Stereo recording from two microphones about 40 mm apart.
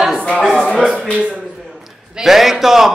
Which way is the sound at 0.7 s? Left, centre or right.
Centre.